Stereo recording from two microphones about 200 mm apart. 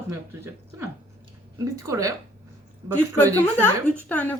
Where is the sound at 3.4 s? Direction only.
10° left (ahead or behind).